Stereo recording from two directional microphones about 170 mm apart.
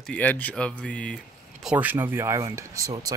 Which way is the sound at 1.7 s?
10° right (ahead or behind).